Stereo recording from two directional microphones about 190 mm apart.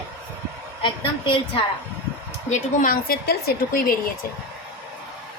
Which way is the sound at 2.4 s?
40° left (ahead or behind).